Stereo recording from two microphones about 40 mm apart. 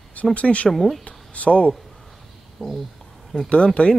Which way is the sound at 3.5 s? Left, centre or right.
Left.